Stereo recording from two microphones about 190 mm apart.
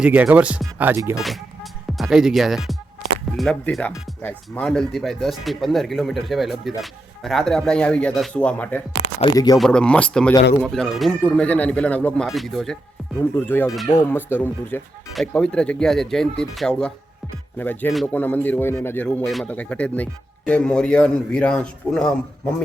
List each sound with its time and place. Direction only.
0.0 s speech: 5° right (ahead or behind)
9.2 s speech: 20° left (ahead or behind)
9.6 s speech: 5° left (ahead or behind)